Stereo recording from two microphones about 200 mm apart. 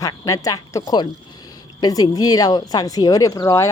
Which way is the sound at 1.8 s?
20° left (ahead or behind).